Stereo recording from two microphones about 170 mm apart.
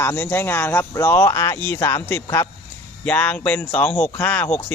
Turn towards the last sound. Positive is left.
turn(degrees=10)  # may be behind; listen again after turning